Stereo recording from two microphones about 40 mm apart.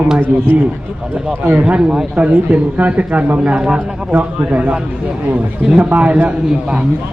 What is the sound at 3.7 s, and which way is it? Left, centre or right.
Speech, right.